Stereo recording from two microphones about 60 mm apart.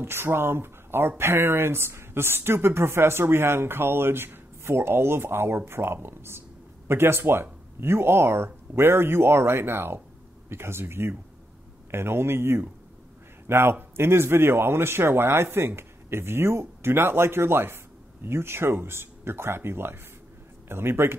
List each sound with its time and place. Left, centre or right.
0.0 s speech: right